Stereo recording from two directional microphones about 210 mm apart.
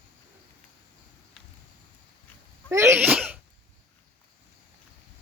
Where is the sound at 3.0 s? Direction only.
5° right (ahead or behind).